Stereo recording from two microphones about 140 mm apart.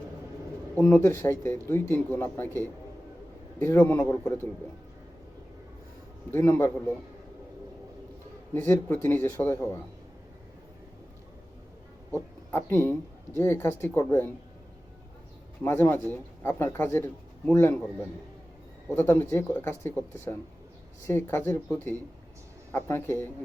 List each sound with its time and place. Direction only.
0.8 s a man's voice: 15° left (ahead or behind)
3.6 s a man's voice: 15° left (ahead or behind)
6.3 s a man's voice: 15° left (ahead or behind)
8.5 s a man's voice: 15° left (ahead or behind)
12.5 s a man's voice: 15° left (ahead or behind)
15.6 s a man's voice: 15° left (ahead or behind)
18.9 s a man's voice: 15° left (ahead or behind)